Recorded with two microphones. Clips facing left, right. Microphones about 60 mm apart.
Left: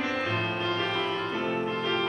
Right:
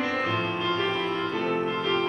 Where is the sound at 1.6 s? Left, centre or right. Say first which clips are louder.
Right 2 dB; centre.